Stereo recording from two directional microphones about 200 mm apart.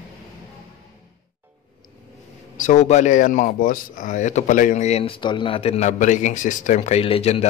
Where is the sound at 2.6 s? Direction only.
40° left (ahead or behind).